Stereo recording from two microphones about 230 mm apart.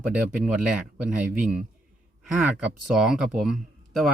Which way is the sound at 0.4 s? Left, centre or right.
Centre.